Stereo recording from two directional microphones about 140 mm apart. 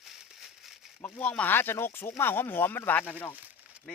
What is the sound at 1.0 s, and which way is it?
Speech, 10° left (ahead or behind).